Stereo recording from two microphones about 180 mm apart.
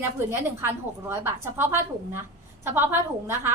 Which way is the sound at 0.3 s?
15° right (ahead or behind).